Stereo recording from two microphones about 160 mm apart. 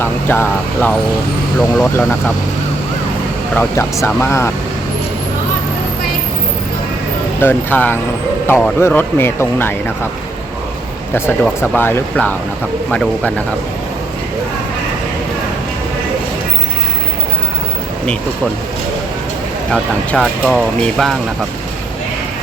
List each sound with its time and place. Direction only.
0.0 s speech: 15° left (ahead or behind)
3.5 s speech: 15° left (ahead or behind)
7.3 s speech: 10° left (ahead or behind)
11.1 s speech: 15° left (ahead or behind)
19.7 s speech: 5° left (ahead or behind)